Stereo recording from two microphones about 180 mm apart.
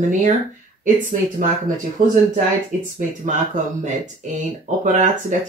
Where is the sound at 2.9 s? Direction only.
45° right (ahead or behind).